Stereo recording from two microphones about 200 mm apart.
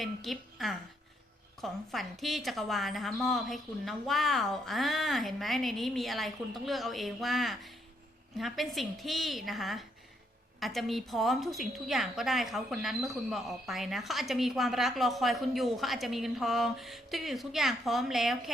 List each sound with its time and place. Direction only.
0.0 s a woman's voice: centre (ahead or behind)